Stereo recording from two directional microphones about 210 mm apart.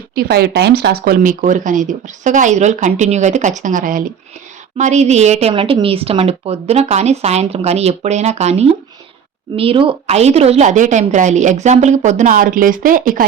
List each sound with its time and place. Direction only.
0.1 s speech: 50° right (ahead or behind)